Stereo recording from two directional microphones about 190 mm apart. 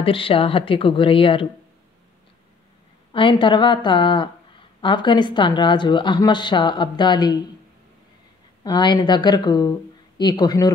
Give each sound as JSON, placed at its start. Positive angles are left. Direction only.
{"t": 0.0, "sound": "a woman's voice", "side_deg": 30}
{"t": 3.1, "sound": "a woman's voice", "side_deg": 25}
{"t": 8.6, "sound": "a woman's voice", "side_deg": 25}